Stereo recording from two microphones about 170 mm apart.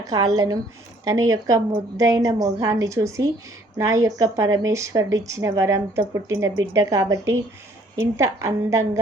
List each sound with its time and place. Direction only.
0.0 s a woman's voice: 20° right (ahead or behind)